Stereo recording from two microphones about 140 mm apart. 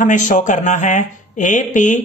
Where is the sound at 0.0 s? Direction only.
65° left (ahead or behind).